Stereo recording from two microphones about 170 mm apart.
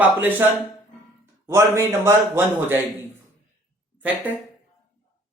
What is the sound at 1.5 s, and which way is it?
A man's voice, 15° right (ahead or behind).